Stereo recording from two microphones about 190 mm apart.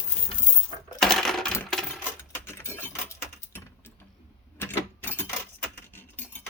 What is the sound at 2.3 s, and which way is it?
Typing, 15° left (ahead or behind).